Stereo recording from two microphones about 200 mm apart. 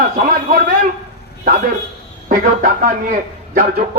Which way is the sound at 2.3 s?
40° right (ahead or behind).